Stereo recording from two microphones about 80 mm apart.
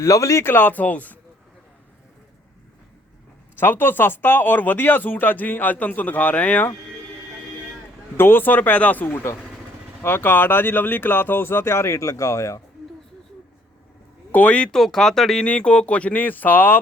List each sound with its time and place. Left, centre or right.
0.0 s speech: left
0.4 s speech: left
3.6 s speech: left
8.1 s speech: left
14.3 s speech: centre
15.4 s speech: centre